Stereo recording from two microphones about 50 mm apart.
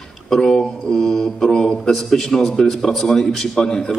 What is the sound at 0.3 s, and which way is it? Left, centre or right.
Mantra, centre.